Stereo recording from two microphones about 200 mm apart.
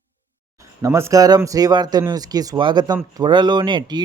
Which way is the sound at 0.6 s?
15° right (ahead or behind).